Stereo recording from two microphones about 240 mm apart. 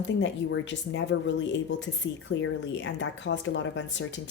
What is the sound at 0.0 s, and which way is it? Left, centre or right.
Speech, left.